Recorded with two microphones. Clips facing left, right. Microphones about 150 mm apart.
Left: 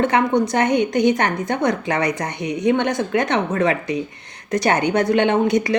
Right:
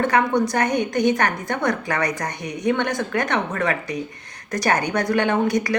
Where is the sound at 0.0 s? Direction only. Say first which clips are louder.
Left 2 dB; 20° left (ahead or behind).